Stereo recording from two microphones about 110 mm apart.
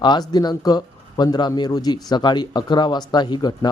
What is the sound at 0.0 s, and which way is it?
Speech, 40° left (ahead or behind).